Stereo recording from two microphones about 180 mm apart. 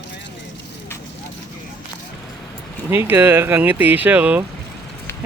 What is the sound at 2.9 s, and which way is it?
Speech, 10° right (ahead or behind).